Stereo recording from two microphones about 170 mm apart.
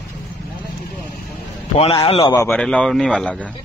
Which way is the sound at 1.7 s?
30° left (ahead or behind).